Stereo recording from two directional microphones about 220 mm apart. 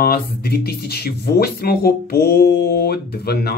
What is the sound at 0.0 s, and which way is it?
Speech, 45° left (ahead or behind).